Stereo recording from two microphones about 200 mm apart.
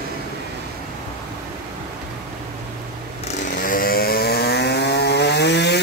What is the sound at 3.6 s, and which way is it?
Chainsaw, 45° left (ahead or behind).